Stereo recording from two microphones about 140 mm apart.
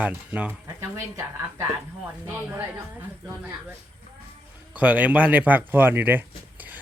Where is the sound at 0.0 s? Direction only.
10° right (ahead or behind).